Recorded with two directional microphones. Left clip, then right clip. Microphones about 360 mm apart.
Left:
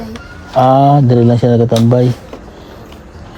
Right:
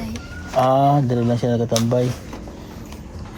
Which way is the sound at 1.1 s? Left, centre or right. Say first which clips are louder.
Left 10 dB; left.